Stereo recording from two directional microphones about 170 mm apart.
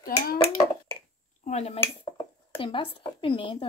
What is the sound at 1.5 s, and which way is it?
Speech, 40° left (ahead or behind).